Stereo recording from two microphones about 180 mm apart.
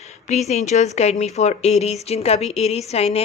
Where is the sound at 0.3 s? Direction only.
40° left (ahead or behind).